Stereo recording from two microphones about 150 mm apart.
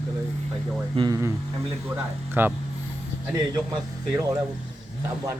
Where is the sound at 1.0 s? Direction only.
25° right (ahead or behind).